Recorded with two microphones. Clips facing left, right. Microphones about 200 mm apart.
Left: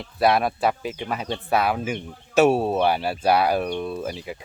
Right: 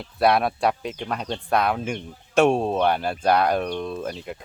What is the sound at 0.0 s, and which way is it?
Speech, centre (ahead or behind).